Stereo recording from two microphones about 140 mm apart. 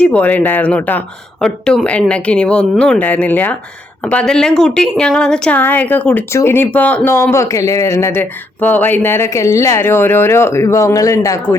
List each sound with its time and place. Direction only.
0.0 s a woman's voice: 10° left (ahead or behind)